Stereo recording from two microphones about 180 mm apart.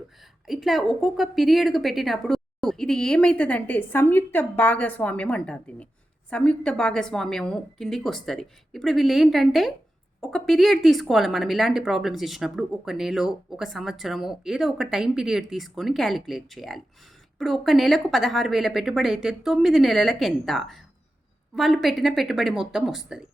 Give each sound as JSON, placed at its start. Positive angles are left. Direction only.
{"t": 0.4, "sound": "speech", "side_deg": 0}